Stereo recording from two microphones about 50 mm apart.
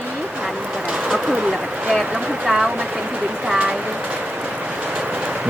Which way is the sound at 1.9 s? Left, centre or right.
Centre.